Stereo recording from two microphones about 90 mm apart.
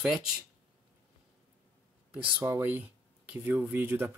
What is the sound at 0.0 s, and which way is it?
Speech, 5° right (ahead or behind).